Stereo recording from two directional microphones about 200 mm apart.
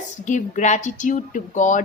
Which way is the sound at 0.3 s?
40° left (ahead or behind).